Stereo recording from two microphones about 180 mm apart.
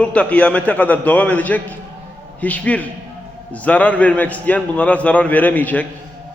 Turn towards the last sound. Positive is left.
turn(degrees=10)  # may be behind; listen again after turning